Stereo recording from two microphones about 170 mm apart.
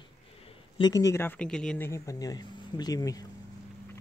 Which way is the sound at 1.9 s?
20° left (ahead or behind).